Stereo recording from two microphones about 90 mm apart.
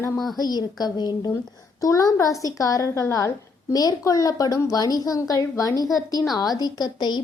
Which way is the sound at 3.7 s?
45° left (ahead or behind).